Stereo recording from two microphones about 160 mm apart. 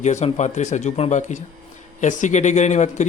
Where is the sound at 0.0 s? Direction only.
45° left (ahead or behind).